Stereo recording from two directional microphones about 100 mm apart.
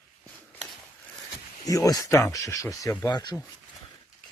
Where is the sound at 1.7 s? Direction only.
35° left (ahead or behind).